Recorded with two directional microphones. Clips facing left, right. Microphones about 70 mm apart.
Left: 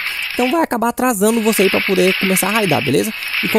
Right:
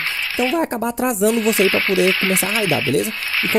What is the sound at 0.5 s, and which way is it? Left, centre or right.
Speech, left.